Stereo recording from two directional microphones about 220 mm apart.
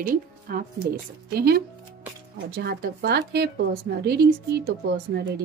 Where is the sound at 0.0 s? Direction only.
40° right (ahead or behind).